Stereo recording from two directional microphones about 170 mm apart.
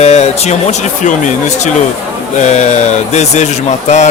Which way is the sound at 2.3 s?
45° left (ahead or behind).